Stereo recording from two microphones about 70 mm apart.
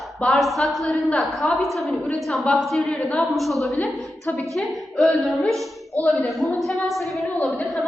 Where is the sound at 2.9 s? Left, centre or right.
Centre.